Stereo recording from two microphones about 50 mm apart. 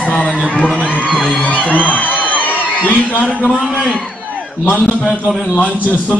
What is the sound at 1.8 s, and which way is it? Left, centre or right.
Music, left.